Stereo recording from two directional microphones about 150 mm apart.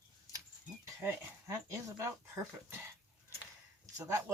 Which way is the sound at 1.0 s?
15° right (ahead or behind).